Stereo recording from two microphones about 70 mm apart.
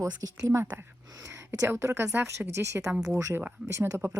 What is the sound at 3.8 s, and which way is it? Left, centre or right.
Speech, right.